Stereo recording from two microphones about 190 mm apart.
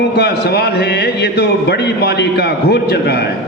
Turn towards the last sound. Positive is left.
turn(degrees=60)  # may be behind; listen again after turning